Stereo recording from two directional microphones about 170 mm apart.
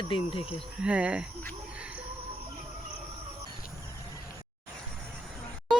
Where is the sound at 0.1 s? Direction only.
30° left (ahead or behind).